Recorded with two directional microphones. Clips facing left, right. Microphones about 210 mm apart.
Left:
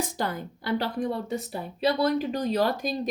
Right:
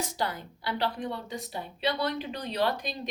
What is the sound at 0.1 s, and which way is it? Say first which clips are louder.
Speech: left 3 dB; 50° left (ahead or behind).